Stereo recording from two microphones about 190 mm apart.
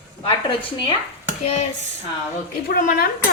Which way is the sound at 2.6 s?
50° left (ahead or behind).